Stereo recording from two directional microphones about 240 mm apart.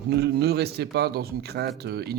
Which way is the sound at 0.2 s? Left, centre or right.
Right.